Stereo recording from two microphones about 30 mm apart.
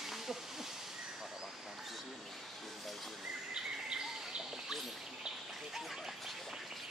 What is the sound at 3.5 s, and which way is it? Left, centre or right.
Bird, right.